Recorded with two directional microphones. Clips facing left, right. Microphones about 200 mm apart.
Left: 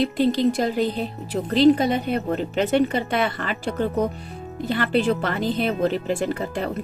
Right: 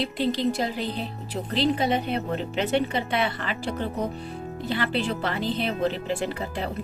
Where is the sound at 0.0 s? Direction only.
45° left (ahead or behind).